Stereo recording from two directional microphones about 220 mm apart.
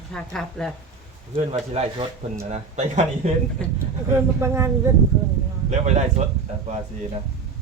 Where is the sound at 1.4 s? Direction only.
30° right (ahead or behind).